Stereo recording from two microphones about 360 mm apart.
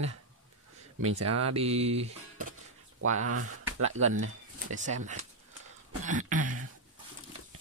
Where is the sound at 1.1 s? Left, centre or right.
Right.